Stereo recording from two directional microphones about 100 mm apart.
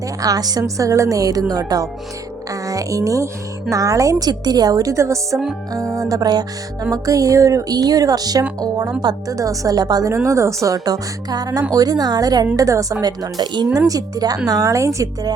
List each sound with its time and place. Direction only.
0.2 s speech: 40° right (ahead or behind)
0.6 s speech: 30° right (ahead or behind)
5.7 s music: 35° right (ahead or behind)
6.9 s speech: 35° right (ahead or behind)